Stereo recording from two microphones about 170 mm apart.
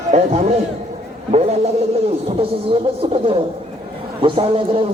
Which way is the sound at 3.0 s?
30° right (ahead or behind).